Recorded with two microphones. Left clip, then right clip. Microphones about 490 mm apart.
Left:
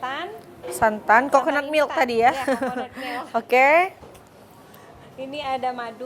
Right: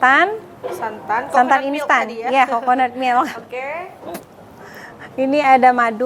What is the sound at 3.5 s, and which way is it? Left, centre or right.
Speech, left.